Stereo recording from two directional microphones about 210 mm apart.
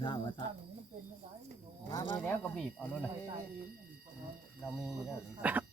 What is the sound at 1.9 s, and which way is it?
Speech, 20° left (ahead or behind).